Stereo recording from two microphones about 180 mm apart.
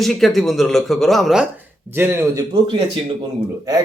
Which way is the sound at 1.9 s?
10° right (ahead or behind).